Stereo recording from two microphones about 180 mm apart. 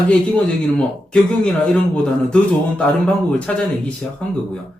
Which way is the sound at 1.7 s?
5° left (ahead or behind).